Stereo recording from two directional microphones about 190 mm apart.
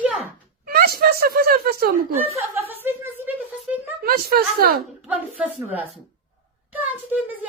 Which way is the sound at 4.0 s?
50° right (ahead or behind).